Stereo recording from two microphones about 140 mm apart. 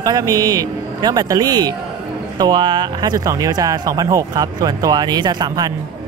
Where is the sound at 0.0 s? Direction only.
25° right (ahead or behind).